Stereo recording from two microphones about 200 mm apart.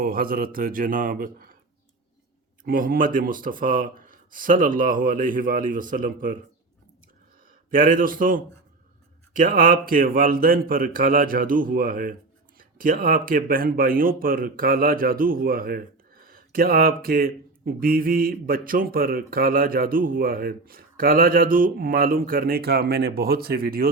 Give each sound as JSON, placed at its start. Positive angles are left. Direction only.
{"t": 0.0, "sound": "speech", "side_deg": -45}
{"t": 2.6, "sound": "speech", "side_deg": -45}
{"t": 7.7, "sound": "speech", "side_deg": -45}